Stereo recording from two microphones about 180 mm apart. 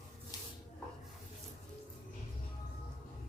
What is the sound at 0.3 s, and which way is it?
Spray, 20° left (ahead or behind).